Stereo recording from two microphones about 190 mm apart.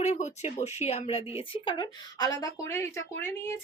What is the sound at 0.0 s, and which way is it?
Speech, 40° left (ahead or behind).